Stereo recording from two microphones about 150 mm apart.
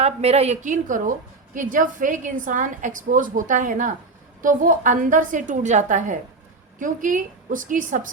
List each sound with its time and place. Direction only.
0.0 s a woman's voice: 45° right (ahead or behind); by 8.0 s 60° right (ahead or behind)